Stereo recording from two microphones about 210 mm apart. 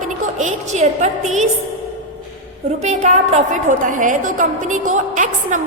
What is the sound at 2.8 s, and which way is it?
A woman's voice, 35° right (ahead or behind).